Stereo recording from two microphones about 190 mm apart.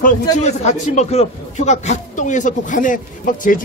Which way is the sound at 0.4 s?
35° left (ahead or behind).